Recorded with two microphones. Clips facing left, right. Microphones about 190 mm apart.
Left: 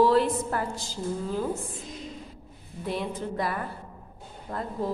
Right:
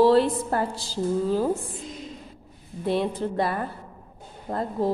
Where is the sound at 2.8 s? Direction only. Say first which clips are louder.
Right 6 dB; 30° right (ahead or behind).